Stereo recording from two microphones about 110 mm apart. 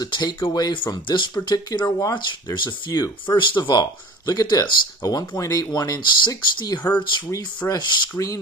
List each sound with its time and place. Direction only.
0.0 s speech: 40° left (ahead or behind)
4.3 s speech: 35° left (ahead or behind)
7.2 s speech: 30° left (ahead or behind)